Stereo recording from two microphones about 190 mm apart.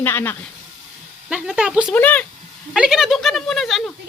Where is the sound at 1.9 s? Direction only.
10° left (ahead or behind).